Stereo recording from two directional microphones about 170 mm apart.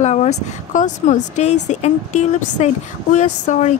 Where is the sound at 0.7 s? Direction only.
45° left (ahead or behind).